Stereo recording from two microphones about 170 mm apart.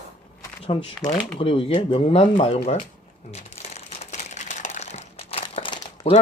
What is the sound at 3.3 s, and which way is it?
Crumpling, 40° left (ahead or behind).